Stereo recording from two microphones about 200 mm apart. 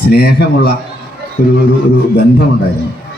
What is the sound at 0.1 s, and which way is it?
Speech, 55° left (ahead or behind).